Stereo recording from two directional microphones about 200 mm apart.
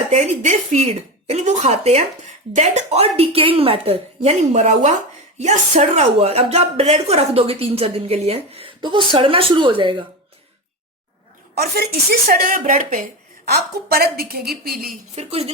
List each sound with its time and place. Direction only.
0.1 s a woman's voice: 35° right (ahead or behind)
11.5 s a woman's voice: 50° right (ahead or behind)
15.1 s a woman's voice: 30° right (ahead or behind)